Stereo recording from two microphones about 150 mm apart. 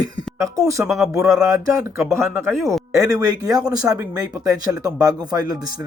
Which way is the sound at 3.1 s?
25° right (ahead or behind).